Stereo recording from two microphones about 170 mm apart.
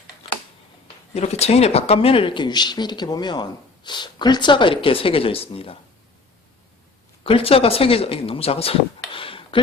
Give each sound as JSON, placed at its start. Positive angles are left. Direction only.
{"t": 1.1, "sound": "speech", "side_deg": 40}
{"t": 7.3, "sound": "speech", "side_deg": 35}